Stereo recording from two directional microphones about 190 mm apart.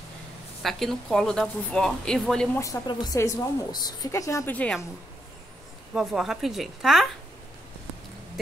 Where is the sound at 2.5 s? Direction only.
15° left (ahead or behind).